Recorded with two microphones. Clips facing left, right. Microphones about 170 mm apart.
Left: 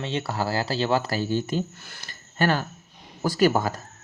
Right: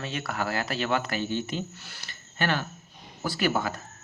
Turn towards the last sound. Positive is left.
turn(degrees=40)  # may be behind; listen again after turning